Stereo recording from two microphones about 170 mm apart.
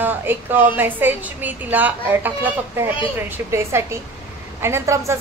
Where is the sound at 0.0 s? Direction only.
10° right (ahead or behind).